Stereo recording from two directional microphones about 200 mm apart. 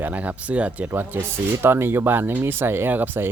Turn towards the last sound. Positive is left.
turn(degrees=-10)  # may be behind; listen again after turning